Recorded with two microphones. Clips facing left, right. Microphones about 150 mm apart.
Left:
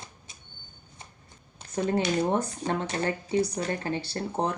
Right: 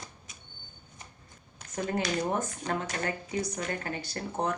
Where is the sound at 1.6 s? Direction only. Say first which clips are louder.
Left 5 dB; 30° left (ahead or behind).